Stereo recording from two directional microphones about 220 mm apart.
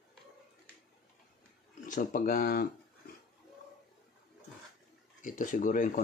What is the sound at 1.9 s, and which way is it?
Speech, 40° left (ahead or behind).